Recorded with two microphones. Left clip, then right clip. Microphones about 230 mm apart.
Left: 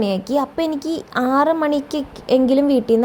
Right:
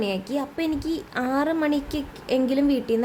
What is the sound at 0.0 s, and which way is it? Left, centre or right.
A woman's voice, centre.